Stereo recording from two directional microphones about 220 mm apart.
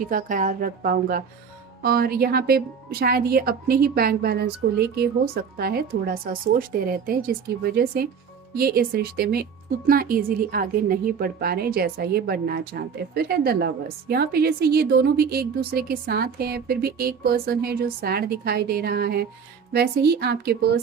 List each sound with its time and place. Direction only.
0.0 s a woman's voice: 35° right (ahead or behind)